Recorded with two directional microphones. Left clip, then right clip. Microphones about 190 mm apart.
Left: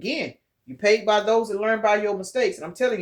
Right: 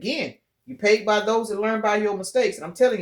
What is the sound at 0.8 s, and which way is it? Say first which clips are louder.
Speech: even; 35° right (ahead or behind).